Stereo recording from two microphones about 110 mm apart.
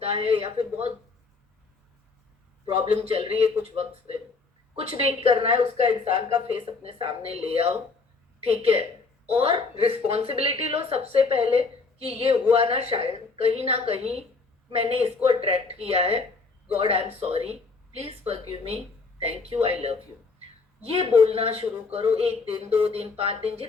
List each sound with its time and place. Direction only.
0.0 s speech: 60° right (ahead or behind)
2.6 s a woman's voice: 60° right (ahead or behind)
4.8 s a woman's voice: 65° right (ahead or behind)
19.4 s speech: 70° right (ahead or behind)
21.2 s a woman's voice: 65° right (ahead or behind)